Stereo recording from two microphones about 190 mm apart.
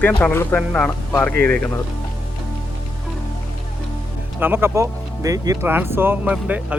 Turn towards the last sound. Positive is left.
turn(degrees=-5)  # may be behind; listen again after turning